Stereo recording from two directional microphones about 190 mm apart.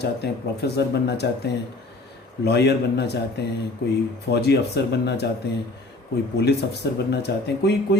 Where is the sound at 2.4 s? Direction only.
60° left (ahead or behind).